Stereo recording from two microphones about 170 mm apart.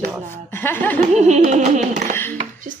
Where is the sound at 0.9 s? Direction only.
40° right (ahead or behind).